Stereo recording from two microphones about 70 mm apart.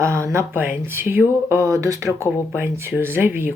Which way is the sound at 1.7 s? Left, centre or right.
Right.